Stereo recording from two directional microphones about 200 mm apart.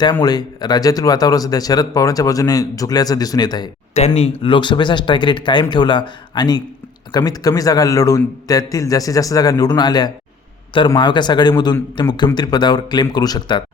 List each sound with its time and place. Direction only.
0.0 s speech: 20° left (ahead or behind)
3.9 s a man's voice: 30° left (ahead or behind)